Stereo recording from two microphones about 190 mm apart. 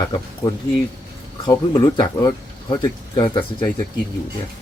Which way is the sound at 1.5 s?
25° left (ahead or behind).